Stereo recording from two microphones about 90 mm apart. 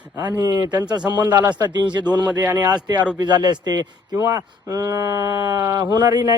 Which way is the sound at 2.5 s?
45° right (ahead or behind).